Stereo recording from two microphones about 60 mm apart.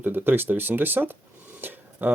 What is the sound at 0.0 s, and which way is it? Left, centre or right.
Speech, right.